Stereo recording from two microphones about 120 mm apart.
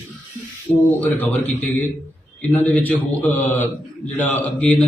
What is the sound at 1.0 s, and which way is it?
Speech, 15° left (ahead or behind).